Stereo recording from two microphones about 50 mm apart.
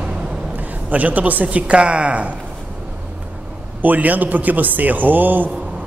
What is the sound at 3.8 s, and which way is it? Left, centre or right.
A man's voice, right.